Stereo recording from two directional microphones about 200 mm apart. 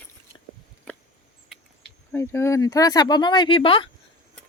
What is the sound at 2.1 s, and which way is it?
A woman's voice, 15° left (ahead or behind).